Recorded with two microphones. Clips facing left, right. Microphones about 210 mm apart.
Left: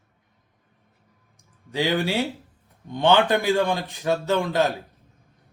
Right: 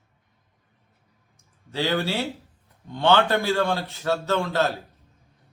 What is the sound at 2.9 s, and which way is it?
A man's voice, 15° left (ahead or behind).